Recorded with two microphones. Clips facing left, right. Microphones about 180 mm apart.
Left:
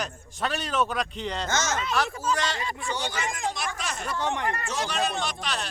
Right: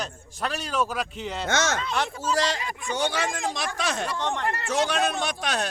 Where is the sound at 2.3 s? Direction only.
35° right (ahead or behind).